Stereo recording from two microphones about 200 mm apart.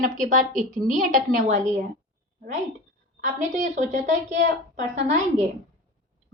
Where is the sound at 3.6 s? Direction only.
40° right (ahead or behind).